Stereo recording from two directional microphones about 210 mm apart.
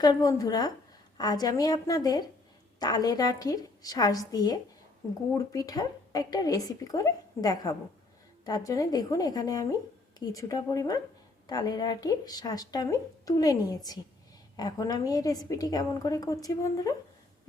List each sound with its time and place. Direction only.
0.0 s speech: 20° left (ahead or behind)